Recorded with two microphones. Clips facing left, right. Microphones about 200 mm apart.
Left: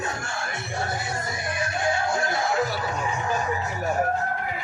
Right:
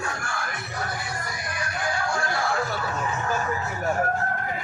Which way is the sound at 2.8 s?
15° left (ahead or behind).